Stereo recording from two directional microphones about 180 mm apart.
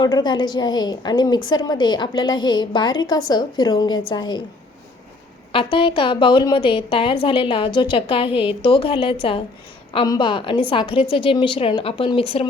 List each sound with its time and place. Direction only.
0.0 s a woman's voice: 25° left (ahead or behind)
5.5 s a woman's voice: 30° left (ahead or behind)